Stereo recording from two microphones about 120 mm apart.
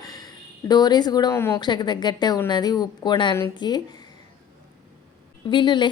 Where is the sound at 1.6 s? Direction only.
40° left (ahead or behind).